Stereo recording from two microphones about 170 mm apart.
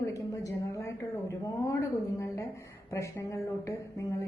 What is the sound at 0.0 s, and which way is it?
A woman's voice, 20° left (ahead or behind).